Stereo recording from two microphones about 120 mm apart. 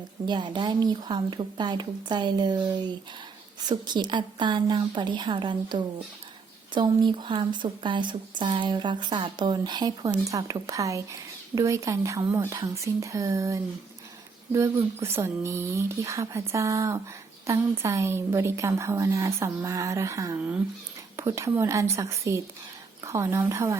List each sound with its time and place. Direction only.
0.3 s a woman's voice: 40° right (ahead or behind); by 23.7 s 25° right (ahead or behind)